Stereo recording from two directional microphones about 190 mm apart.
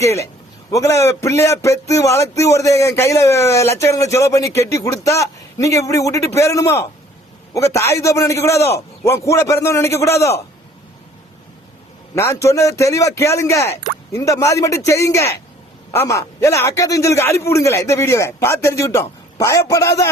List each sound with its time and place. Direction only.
0.0 s speech: 15° left (ahead or behind)
12.1 s speech: 15° left (ahead or behind)